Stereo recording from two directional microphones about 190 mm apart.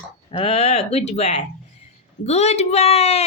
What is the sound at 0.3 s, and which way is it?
A woman's voice, 30° left (ahead or behind).